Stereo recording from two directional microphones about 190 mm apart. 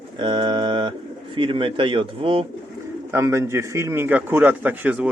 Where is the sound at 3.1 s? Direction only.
15° right (ahead or behind).